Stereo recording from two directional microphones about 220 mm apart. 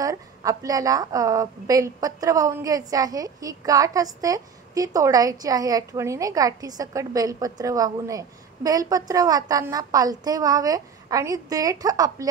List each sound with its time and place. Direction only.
0.0 s a woman's voice: 15° right (ahead or behind)